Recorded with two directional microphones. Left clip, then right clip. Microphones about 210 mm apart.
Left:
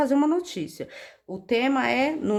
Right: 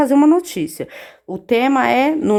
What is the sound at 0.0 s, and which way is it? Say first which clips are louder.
Speech: right 9 dB; 30° right (ahead or behind).